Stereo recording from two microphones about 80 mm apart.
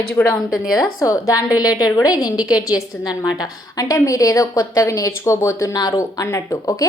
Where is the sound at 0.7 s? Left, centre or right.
Left.